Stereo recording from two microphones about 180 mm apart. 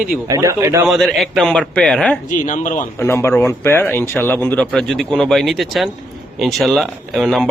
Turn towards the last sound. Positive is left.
turn(degrees=0)  # may be behind; listen again after turning